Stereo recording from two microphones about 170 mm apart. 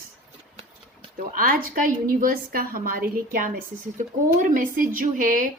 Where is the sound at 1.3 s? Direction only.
55° right (ahead or behind).